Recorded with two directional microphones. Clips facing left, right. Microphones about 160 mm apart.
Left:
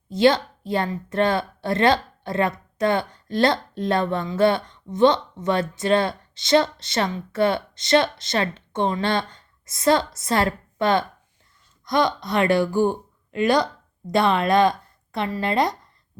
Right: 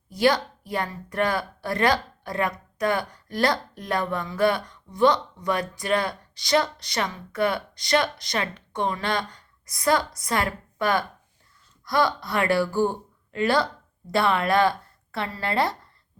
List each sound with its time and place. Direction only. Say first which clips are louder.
0.1 s a woman's voice: left 4 dB; 25° left (ahead or behind)